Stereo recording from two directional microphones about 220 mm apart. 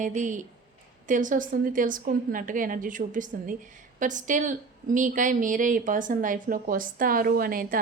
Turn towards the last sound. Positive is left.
turn(degrees=-40)  # may be behind; listen again after turning